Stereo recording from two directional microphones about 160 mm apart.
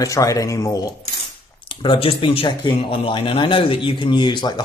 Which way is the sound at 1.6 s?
30° left (ahead or behind).